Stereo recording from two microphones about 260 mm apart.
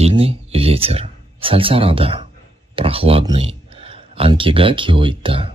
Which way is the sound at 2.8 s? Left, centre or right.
Right.